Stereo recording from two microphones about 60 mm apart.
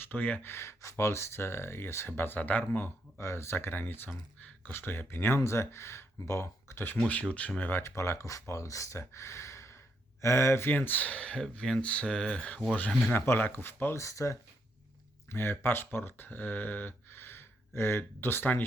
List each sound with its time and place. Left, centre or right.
0.1 s speech: left
0.5 s speech: left
3.2 s speech: left
7.1 s speech: left
7.8 s speech: left
10.7 s speech: left
13.1 s speech: left
13.9 s speech: left
15.3 s speech: left